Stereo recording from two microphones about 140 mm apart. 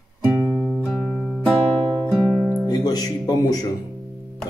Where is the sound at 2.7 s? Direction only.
30° left (ahead or behind).